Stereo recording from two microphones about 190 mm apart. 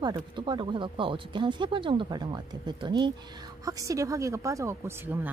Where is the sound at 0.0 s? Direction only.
25° right (ahead or behind).